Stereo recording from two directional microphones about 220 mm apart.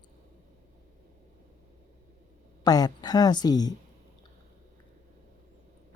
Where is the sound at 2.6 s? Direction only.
15° left (ahead or behind).